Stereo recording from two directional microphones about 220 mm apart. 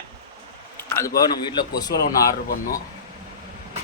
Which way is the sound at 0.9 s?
15° left (ahead or behind).